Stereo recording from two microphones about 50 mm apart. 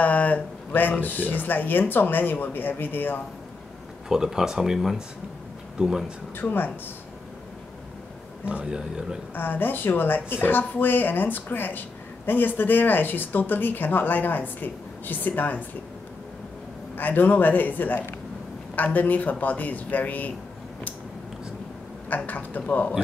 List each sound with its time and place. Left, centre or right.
0.0 s a sound: left
1.0 s speech: left
4.1 s a man's voice: centre
5.8 s a man's voice: centre
6.4 s speech: left
8.5 s a man's voice: centre
9.3 s speech: left
16.9 s speech: left
22.1 s speech: left